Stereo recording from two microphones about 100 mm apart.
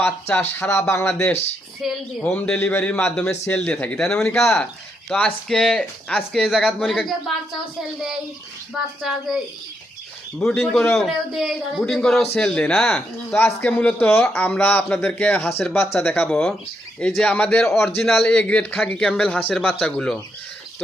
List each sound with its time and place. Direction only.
0.0 s speech: 20° left (ahead or behind)
1.8 s speech: centre (ahead or behind)
2.2 s a man's voice: 10° left (ahead or behind)
8.7 s a man's voice: centre (ahead or behind)
10.4 s a man's voice: centre (ahead or behind)
17.8 s a man's voice: centre (ahead or behind)
18.3 s a man's voice: 10° left (ahead or behind)